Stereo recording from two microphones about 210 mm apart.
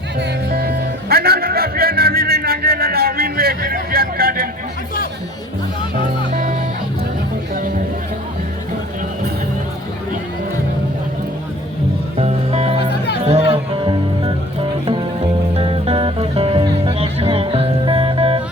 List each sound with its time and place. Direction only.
0.2 s music: 50° right (ahead or behind)
1.1 s a sound: 45° right (ahead or behind)
12.1 s music: 30° right (ahead or behind)
15.5 s music: 25° right (ahead or behind)